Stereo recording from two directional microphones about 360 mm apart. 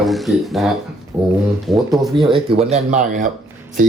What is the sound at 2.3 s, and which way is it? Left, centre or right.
Speech, centre.